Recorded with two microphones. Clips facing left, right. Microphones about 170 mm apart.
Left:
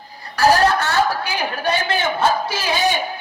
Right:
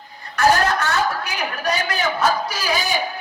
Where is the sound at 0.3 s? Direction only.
35° left (ahead or behind).